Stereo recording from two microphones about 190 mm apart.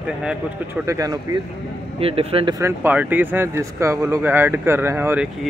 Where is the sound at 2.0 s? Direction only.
30° right (ahead or behind).